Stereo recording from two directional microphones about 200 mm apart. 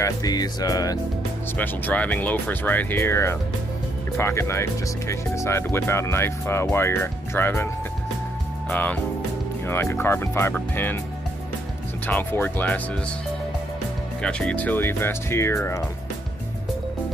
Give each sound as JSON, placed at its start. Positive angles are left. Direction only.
{"t": 0.0, "sound": "music", "side_deg": 20}
{"t": 1.6, "sound": "speech", "side_deg": 10}
{"t": 12.1, "sound": "speech", "side_deg": 10}
{"t": 14.2, "sound": "speech", "side_deg": 5}